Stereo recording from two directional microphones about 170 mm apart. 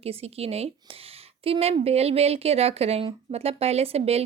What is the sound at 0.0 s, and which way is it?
Speech, 35° right (ahead or behind).